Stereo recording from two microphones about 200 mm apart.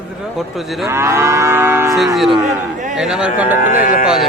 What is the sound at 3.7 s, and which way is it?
Speech, 45° left (ahead or behind).